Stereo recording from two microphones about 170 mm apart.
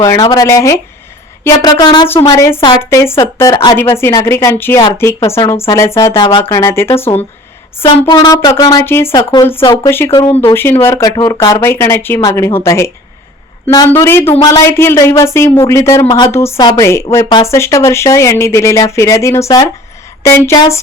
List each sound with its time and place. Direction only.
0.0 s speech: 25° left (ahead or behind)
3.8 s speech: 15° left (ahead or behind)
6.1 s speech: 30° left (ahead or behind)
6.5 s speech: 15° left (ahead or behind)
7.9 s speech: 30° left (ahead or behind)
16.3 s speech: 15° left (ahead or behind)